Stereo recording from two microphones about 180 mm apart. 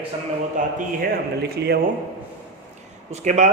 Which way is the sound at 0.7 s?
55° right (ahead or behind).